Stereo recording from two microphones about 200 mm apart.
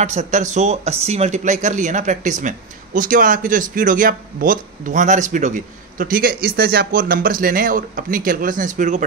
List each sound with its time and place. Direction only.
0.0 s speech: 35° right (ahead or behind)